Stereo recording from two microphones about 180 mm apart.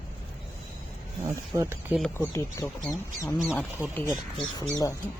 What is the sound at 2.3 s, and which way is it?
Speech, 15° left (ahead or behind).